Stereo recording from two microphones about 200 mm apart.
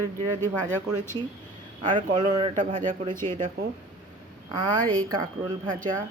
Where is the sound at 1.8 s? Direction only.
25° right (ahead or behind).